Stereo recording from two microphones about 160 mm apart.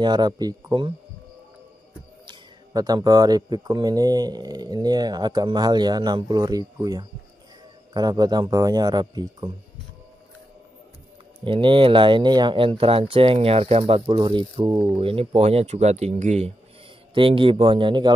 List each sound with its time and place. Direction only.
0.0 s speech: 25° right (ahead or behind)
2.2 s speech: 25° right (ahead or behind)
11.4 s speech: 30° right (ahead or behind)
17.1 s speech: 35° right (ahead or behind)